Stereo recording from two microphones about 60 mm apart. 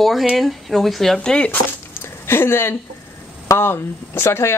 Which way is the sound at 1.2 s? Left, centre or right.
Centre.